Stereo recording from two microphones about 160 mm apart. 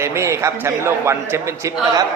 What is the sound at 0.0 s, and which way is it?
A man's voice, 15° right (ahead or behind).